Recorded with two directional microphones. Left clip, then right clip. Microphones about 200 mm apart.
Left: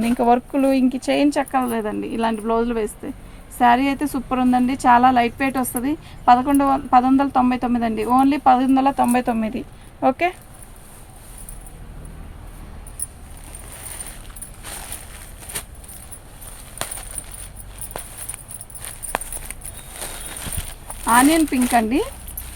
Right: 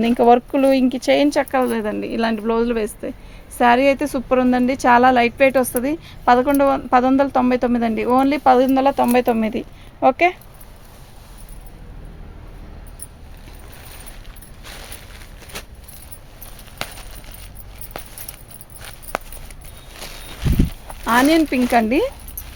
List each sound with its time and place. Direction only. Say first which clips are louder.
0.0 s a woman's voice: right 4 dB; 40° right (ahead or behind)
21.0 s a woman's voice: even; 50° right (ahead or behind)